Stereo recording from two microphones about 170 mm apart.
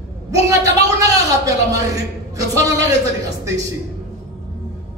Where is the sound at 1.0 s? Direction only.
20° right (ahead or behind).